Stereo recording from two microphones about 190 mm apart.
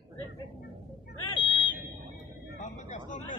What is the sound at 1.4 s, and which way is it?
Buzzer, 25° left (ahead or behind).